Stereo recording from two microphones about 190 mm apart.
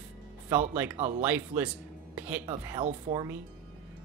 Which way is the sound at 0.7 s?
10° right (ahead or behind).